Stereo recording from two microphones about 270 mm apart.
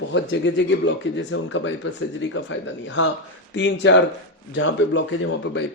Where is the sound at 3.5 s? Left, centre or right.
Left.